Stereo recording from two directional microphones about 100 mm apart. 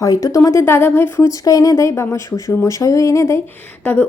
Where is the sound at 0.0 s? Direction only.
35° left (ahead or behind).